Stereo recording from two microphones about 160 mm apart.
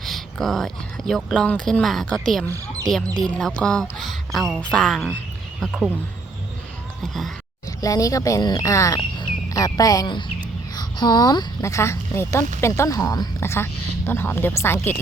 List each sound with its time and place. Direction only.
0.0 s speech: centre (ahead or behind)
7.0 s speech: centre (ahead or behind)
7.8 s speech: 20° left (ahead or behind)